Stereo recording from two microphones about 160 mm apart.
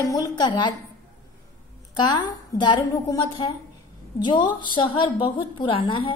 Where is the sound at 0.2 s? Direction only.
25° left (ahead or behind).